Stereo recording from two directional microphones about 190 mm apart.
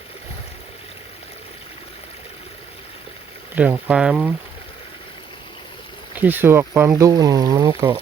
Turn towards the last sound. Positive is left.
turn(degrees=-15)  # may be behind; listen again after turning